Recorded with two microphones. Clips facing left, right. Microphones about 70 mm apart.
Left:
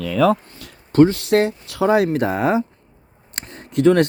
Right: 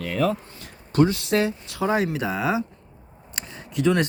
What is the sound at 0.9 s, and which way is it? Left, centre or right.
Speech, left.